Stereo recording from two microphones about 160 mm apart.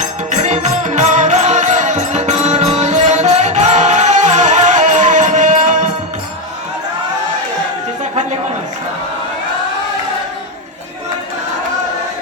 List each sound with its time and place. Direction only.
0.3 s music: 45° right (ahead or behind)